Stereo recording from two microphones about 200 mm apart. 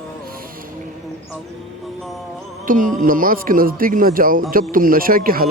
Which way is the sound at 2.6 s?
45° right (ahead or behind).